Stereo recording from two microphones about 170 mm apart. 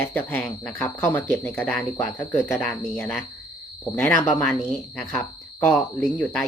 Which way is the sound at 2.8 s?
5° left (ahead or behind).